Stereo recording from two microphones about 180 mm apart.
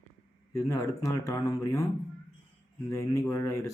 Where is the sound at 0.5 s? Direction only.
20° left (ahead or behind).